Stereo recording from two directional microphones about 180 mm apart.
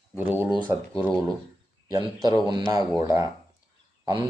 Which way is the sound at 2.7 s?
20° right (ahead or behind).